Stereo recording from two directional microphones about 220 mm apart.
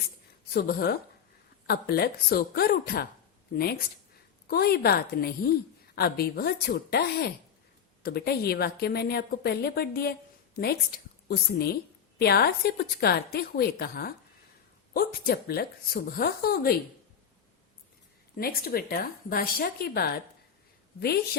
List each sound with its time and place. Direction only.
0.5 s a woman's voice: 45° left (ahead or behind)
15.3 s a woman's voice: 45° left (ahead or behind)
18.3 s a woman's voice: 45° left (ahead or behind)